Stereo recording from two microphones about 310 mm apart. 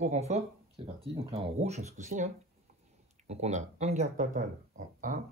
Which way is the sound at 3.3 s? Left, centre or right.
Right.